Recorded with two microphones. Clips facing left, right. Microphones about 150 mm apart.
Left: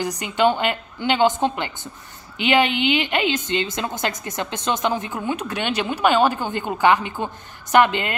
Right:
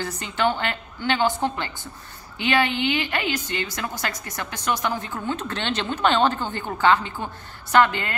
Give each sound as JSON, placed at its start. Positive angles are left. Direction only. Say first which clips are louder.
{"t": 0.0, "sound": "a woman's voice", "louder": "left 5 dB", "side_deg": 15}